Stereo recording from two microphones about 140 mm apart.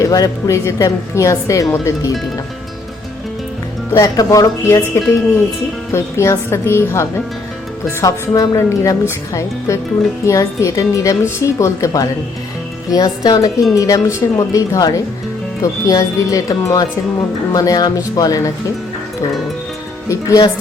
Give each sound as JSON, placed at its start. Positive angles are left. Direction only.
{"t": 0.0, "sound": "a woman's voice", "side_deg": 25}
{"t": 3.9, "sound": "a woman's voice", "side_deg": 25}
{"t": 20.1, "sound": "a woman's voice", "side_deg": 25}